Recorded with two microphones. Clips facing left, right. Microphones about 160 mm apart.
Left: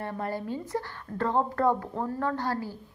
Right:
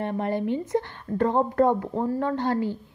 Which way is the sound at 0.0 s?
20° right (ahead or behind).